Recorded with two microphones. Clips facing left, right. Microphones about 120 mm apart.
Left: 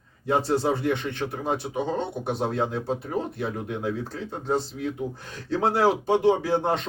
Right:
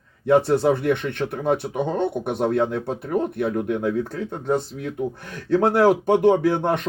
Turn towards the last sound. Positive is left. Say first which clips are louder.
# right 4 dB
turn(degrees=-60)  # may be behind; listen again after turning